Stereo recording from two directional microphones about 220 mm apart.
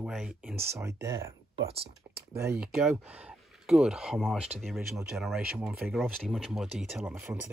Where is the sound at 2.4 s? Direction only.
10° right (ahead or behind).